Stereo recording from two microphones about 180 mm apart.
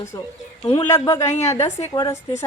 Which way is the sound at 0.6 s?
15° left (ahead or behind).